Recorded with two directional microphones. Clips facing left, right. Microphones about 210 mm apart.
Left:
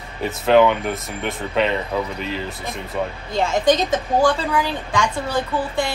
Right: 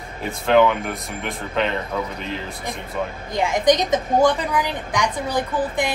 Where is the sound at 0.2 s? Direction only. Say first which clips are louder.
Left 2 dB; centre (ahead or behind).